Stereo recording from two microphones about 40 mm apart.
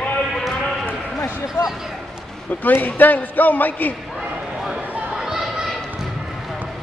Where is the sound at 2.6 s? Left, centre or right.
Left.